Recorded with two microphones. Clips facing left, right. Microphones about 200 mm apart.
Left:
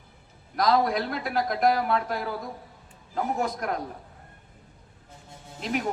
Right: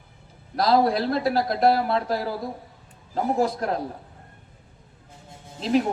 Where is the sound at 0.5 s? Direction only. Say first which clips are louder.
Right 3 dB; 35° right (ahead or behind).